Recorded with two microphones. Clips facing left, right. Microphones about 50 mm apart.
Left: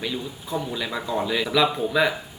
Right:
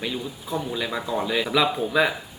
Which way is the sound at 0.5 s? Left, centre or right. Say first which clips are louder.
Even; centre.